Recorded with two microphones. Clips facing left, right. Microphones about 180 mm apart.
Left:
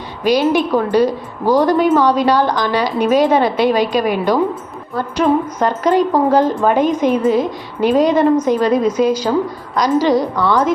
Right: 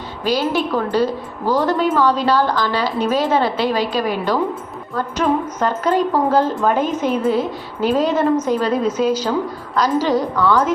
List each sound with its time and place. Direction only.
0.3 s a woman's voice: 15° left (ahead or behind)